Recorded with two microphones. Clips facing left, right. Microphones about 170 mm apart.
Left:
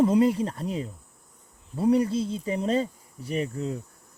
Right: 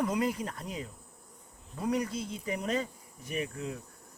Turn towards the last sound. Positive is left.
turn(degrees=35)  # may be behind; listen again after turning